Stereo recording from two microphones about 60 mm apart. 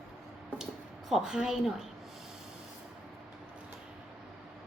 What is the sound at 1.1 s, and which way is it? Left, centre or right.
Speech, centre.